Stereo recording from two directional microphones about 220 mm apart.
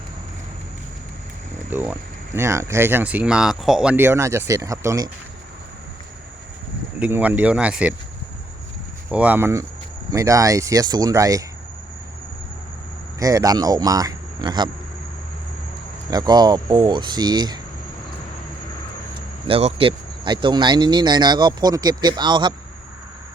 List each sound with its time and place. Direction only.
1.7 s speech: 10° right (ahead or behind)
7.0 s speech: 5° right (ahead or behind)
9.0 s speech: 5° right (ahead or behind)
13.1 s speech: 15° right (ahead or behind)
16.0 s speech: 20° right (ahead or behind)
19.5 s speech: 25° right (ahead or behind)